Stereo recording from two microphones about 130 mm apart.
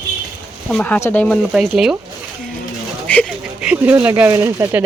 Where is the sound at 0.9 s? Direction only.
15° left (ahead or behind).